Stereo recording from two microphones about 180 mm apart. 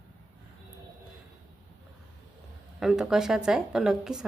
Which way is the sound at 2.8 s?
5° right (ahead or behind).